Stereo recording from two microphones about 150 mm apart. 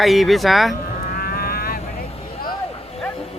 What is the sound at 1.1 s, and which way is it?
Vehicle, 85° left.